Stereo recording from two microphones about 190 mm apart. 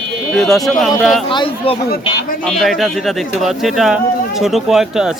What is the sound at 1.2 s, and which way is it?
Speech, 25° left (ahead or behind).